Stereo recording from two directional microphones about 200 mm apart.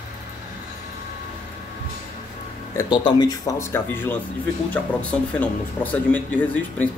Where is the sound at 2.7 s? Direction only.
20° left (ahead or behind).